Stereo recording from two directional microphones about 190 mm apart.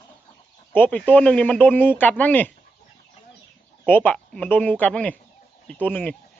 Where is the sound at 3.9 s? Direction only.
10° left (ahead or behind).